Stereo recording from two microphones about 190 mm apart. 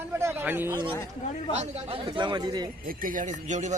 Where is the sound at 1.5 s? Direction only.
30° right (ahead or behind).